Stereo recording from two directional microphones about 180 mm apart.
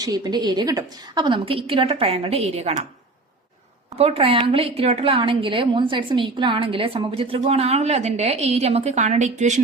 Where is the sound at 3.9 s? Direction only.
35° right (ahead or behind).